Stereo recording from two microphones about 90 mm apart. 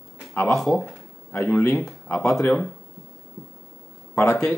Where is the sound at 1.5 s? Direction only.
25° left (ahead or behind).